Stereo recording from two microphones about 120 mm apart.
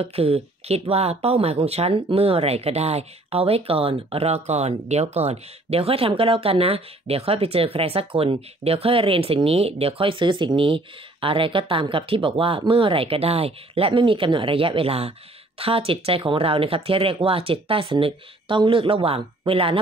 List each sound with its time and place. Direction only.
0.0 s speech: 55° right (ahead or behind)